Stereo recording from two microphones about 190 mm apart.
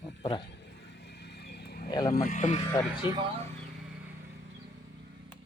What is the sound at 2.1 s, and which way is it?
Speech, 40° left (ahead or behind).